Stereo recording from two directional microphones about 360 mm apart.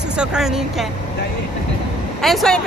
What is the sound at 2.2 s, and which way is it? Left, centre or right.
Speech, centre.